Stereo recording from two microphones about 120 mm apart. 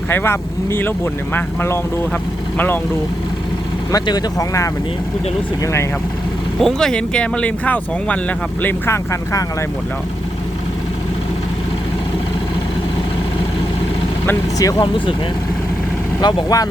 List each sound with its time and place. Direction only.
0.1 s speech: 20° left (ahead or behind)
3.9 s speech: 35° left (ahead or behind)
6.6 s speech: 5° left (ahead or behind)
8.6 s speech: 25° left (ahead or behind)
14.8 s speech: 45° left (ahead or behind)
16.2 s speech: 30° left (ahead or behind)